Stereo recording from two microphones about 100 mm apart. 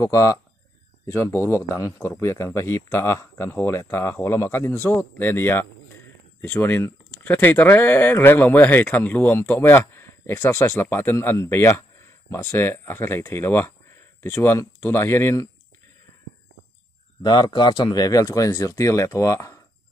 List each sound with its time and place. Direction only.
0.0 s speech: 30° left (ahead or behind)
17.2 s speech: 45° left (ahead or behind); by 19.6 s 30° left (ahead or behind)